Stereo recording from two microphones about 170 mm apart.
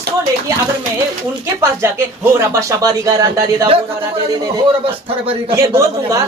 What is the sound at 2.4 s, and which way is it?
A woman's voice, 15° right (ahead or behind).